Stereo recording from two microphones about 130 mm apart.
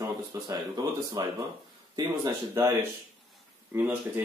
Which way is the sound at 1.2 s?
30° right (ahead or behind).